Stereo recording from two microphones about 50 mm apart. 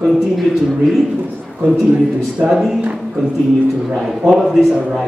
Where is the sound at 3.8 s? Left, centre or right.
Centre.